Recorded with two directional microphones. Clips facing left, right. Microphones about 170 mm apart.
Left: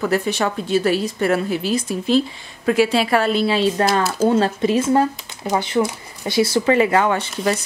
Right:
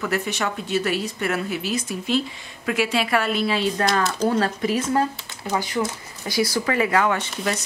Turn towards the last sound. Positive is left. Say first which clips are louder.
# left 5 dB
turn(degrees=30)  # may be behind; listen again after turning